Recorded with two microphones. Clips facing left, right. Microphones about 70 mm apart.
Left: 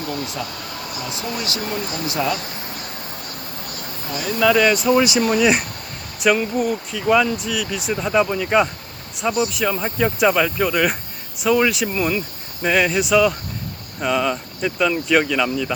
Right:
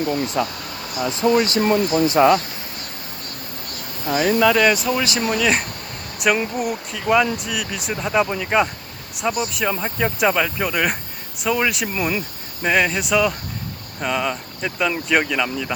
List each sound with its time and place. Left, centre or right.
0.4 s speech: right
1.0 s speech: right
1.6 s speech: right
4.1 s speech: right
4.4 s speech: centre
4.9 s speech: centre
6.5 s speech: centre